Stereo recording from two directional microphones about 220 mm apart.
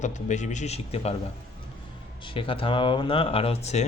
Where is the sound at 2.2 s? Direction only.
25° left (ahead or behind).